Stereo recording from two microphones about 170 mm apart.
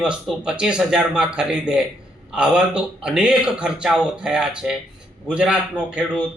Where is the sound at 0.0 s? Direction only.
5° right (ahead or behind).